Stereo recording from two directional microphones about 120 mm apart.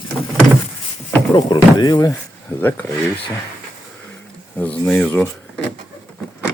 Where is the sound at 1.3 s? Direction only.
35° left (ahead or behind).